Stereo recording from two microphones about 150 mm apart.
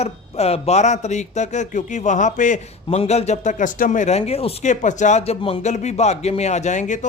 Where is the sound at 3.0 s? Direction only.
45° left (ahead or behind).